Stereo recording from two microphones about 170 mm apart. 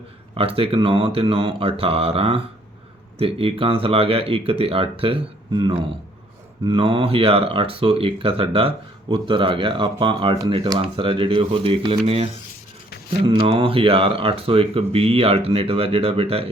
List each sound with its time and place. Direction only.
0.3 s speech: 35° right (ahead or behind)